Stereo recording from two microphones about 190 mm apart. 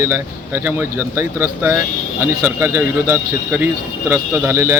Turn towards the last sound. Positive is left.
turn(degrees=-15)  # may be behind; listen again after turning